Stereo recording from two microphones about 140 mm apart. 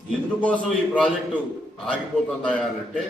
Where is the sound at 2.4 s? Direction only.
10° left (ahead or behind).